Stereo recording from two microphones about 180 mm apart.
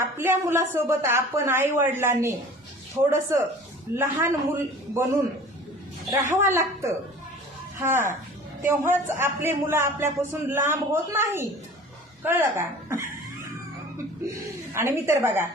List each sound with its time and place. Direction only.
0.0 s speech: 15° right (ahead or behind)
14.7 s speech: 15° right (ahead or behind)